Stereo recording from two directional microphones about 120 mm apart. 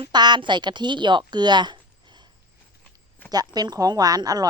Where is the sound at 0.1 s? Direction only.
40° right (ahead or behind).